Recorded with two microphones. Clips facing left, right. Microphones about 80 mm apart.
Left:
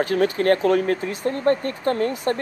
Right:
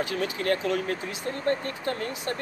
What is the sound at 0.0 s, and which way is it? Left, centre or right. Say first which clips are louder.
Speech: left 9 dB; left.